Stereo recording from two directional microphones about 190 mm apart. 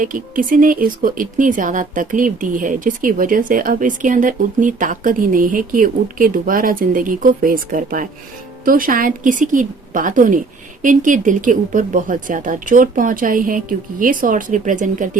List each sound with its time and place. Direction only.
0.0 s speech: 45° right (ahead or behind)